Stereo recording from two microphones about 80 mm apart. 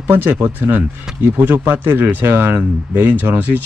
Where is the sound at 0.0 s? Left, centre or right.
Right.